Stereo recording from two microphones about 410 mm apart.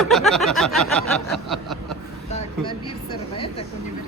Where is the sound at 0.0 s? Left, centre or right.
Centre.